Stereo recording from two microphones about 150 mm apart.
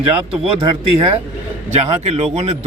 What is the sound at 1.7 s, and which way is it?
Speech, 45° right (ahead or behind).